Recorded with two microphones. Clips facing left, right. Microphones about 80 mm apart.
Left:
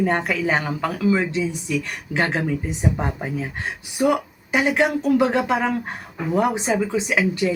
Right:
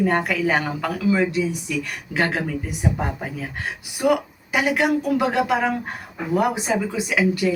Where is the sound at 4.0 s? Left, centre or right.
Left.